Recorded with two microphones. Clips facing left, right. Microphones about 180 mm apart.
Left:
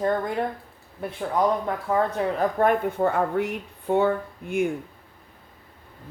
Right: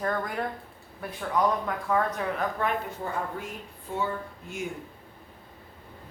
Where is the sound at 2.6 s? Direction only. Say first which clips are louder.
Left 9 dB; 55° left (ahead or behind).